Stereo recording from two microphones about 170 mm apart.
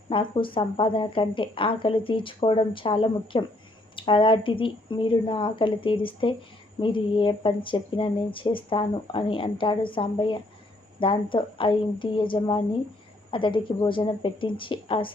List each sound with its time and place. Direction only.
0.1 s a woman's voice: 30° left (ahead or behind)